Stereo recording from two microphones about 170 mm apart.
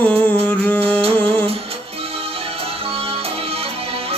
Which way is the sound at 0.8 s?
35° right (ahead or behind).